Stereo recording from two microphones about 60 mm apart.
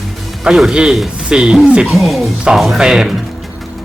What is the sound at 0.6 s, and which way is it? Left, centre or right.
Speech, centre.